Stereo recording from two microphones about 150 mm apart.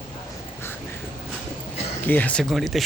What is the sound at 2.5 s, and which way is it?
Speech, centre (ahead or behind).